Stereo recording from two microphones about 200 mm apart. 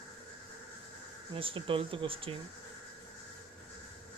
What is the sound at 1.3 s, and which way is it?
Speech, 25° right (ahead or behind).